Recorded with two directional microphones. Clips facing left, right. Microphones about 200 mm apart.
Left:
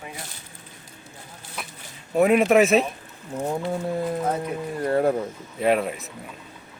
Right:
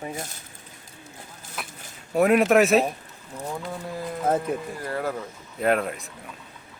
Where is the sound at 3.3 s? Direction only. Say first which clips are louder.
Left 6 dB; 30° left (ahead or behind).